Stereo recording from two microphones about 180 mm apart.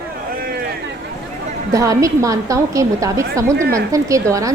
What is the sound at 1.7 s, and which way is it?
A woman's voice, 20° right (ahead or behind).